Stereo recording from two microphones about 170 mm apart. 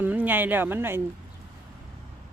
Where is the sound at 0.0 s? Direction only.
10° right (ahead or behind).